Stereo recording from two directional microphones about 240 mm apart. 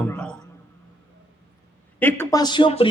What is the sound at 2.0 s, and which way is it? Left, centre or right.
Speech, centre.